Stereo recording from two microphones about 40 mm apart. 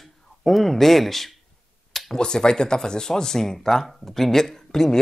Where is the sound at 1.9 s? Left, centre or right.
Centre.